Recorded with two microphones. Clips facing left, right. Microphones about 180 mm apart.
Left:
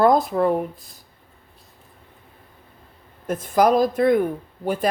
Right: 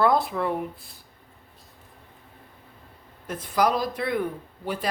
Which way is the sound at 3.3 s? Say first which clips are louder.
Left 6 dB; 50° left (ahead or behind).